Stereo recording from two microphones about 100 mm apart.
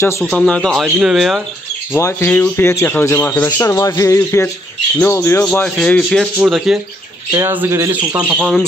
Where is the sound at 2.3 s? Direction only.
15° left (ahead or behind).